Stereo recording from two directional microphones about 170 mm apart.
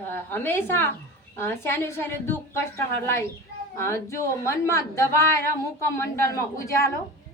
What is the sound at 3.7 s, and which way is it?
A woman's voice, 15° left (ahead or behind).